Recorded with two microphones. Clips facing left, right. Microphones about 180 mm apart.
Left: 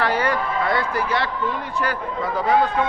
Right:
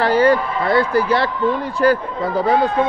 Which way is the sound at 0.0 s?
30° right (ahead or behind).